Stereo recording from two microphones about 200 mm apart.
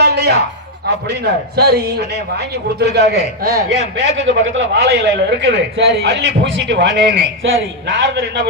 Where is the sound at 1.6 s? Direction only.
50° right (ahead or behind).